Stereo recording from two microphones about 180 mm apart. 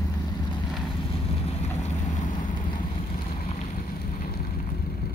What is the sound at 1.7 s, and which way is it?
Vehicle, 40° left (ahead or behind).